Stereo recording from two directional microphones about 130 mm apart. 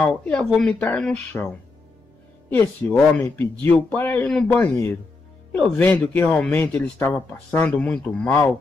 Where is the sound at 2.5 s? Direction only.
15° left (ahead or behind).